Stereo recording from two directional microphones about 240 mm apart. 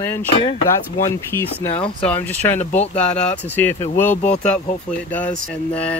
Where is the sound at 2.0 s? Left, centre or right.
Centre.